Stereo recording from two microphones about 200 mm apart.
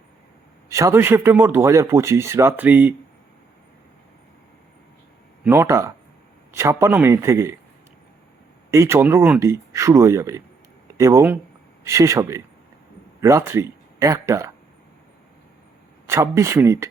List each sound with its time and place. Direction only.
0.7 s speech: 15° right (ahead or behind)
5.4 s speech: 10° right (ahead or behind)
8.7 s speech: 15° right (ahead or behind)
16.0 s speech: 15° right (ahead or behind)